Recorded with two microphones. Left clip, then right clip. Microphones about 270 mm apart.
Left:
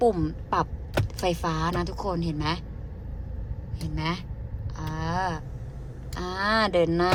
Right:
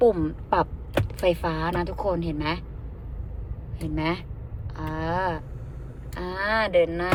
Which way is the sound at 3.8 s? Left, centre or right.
Centre.